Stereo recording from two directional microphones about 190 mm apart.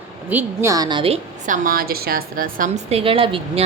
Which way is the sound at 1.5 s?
50° right (ahead or behind).